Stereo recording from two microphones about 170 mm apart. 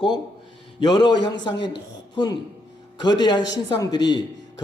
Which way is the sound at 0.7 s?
25° left (ahead or behind).